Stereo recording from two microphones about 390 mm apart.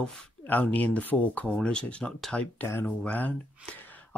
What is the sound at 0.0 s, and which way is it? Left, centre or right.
Speech, centre.